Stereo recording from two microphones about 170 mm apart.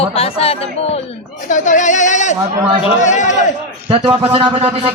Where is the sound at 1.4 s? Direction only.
50° left (ahead or behind).